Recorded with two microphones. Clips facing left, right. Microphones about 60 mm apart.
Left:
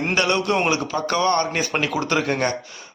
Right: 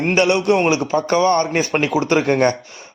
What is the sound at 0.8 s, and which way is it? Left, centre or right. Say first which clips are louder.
A man's voice: right 5 dB; right.